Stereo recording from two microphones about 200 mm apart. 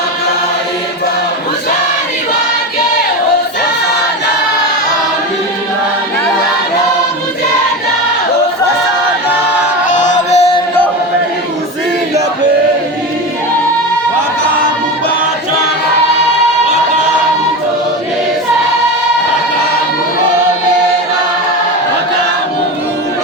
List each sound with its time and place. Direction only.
9.8 s music: 35° left (ahead or behind)